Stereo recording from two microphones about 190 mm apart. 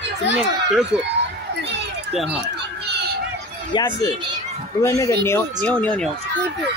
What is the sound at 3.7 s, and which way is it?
A child's voice, 20° left (ahead or behind).